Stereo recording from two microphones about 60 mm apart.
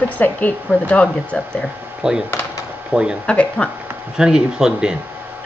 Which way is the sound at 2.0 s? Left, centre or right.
Centre.